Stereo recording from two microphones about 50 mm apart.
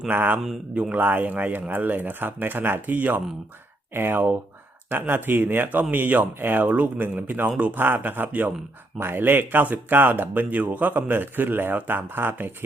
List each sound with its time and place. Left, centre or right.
0.1 s speech: right
9.0 s speech: right